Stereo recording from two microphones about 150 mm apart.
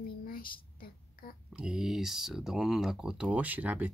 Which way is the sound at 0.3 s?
75° left (ahead or behind).